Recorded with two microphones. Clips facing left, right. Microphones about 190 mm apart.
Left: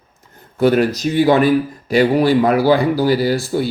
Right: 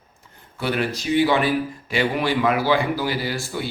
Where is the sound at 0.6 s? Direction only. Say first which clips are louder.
Left 10 dB; 45° left (ahead or behind).